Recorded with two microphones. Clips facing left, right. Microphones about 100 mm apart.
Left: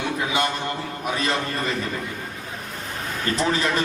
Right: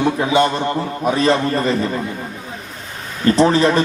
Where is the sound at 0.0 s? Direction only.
35° right (ahead or behind).